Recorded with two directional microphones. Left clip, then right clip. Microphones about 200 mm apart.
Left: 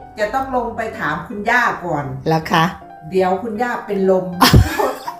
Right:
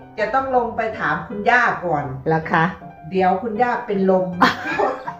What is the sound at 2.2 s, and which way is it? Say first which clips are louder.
Speech: left 3 dB; 25° left (ahead or behind).